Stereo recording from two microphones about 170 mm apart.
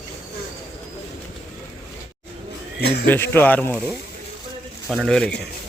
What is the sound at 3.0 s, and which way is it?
A man's voice, 10° left (ahead or behind).